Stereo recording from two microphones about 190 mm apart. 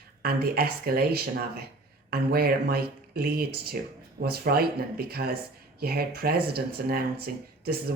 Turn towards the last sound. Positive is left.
turn(degrees=-55)  # may be behind; listen again after turning